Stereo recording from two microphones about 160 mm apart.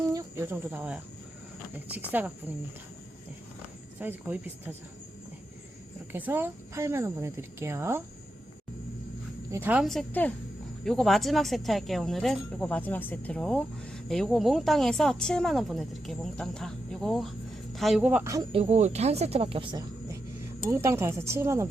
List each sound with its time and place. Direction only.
0.1 s cricket: 20° right (ahead or behind)
1.9 s speech: 10° right (ahead or behind)
4.0 s speech: 10° right (ahead or behind)
6.1 s speech: 10° right (ahead or behind)
9.5 s speech: 10° right (ahead or behind)
9.8 s speech: centre (ahead or behind)
18.5 s speech: 40° right (ahead or behind)
20.7 s speech: 15° right (ahead or behind)